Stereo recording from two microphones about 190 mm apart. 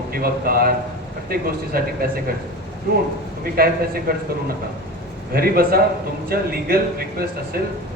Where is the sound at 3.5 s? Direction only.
50° right (ahead or behind).